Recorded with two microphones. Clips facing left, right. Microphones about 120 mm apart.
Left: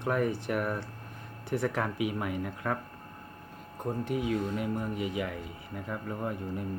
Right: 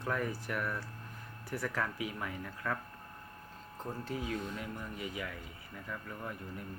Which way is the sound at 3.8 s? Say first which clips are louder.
Left 8 dB; 20° left (ahead or behind).